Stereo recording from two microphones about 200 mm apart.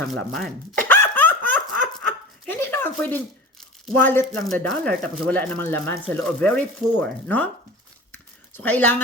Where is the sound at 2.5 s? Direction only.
10° left (ahead or behind).